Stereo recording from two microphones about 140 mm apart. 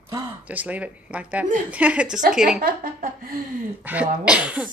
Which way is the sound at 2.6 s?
90° right.